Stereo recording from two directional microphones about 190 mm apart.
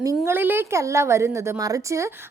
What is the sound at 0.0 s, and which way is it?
A woman's voice, 15° right (ahead or behind).